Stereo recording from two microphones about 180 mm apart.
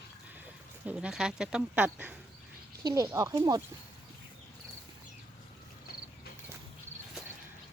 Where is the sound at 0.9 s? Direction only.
5° right (ahead or behind); by 3.6 s 20° right (ahead or behind).